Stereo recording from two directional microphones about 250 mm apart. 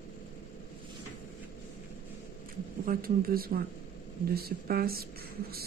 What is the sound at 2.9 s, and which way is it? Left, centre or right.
Speech, right.